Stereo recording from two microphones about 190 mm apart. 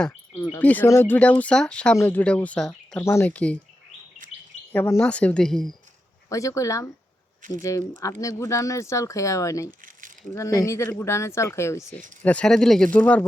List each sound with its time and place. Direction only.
0.3 s speech: 15° left (ahead or behind)
4.2 s bird vocalization: 45° right (ahead or behind)
4.7 s speech: 10° left (ahead or behind)
6.2 s speech: 15° left (ahead or behind)
11.8 s speech: centre (ahead or behind)